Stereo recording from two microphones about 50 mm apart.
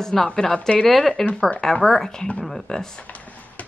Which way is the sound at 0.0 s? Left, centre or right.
Centre.